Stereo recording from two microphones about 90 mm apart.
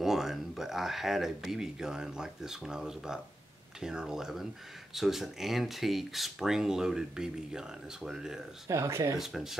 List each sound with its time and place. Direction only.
0.0 s speech: 5° right (ahead or behind)
8.6 s speech: 30° right (ahead or behind)
9.2 s speech: 5° right (ahead or behind)